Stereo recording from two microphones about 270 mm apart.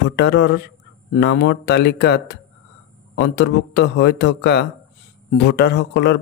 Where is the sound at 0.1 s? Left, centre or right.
Left.